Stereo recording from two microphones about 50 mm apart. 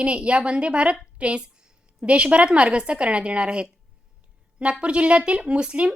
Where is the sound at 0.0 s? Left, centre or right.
Right.